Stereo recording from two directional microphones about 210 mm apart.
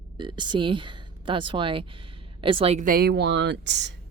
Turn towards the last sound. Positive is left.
turn(degrees=-55)  # may be behind; listen again after turning